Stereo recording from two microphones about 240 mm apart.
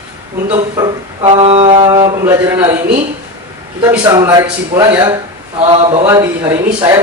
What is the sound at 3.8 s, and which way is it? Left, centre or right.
Speech, centre.